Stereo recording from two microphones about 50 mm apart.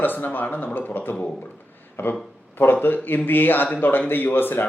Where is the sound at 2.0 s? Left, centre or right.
Left.